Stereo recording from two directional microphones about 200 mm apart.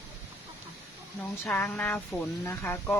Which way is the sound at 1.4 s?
10° left (ahead or behind).